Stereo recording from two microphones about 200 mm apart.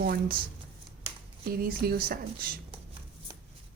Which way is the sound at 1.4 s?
45° right (ahead or behind).